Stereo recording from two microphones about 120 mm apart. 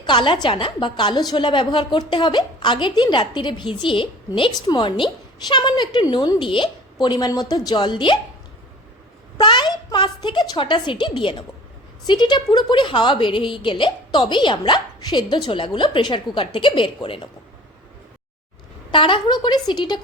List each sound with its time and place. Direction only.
0.0 s a woman's voice: 40° left (ahead or behind)
9.4 s a woman's voice: 40° left (ahead or behind)
18.9 s a woman's voice: 45° left (ahead or behind)